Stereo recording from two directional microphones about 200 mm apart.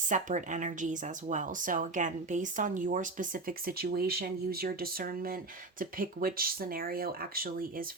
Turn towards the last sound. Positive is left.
turn(degrees=-45)  # may be behind; listen again after turning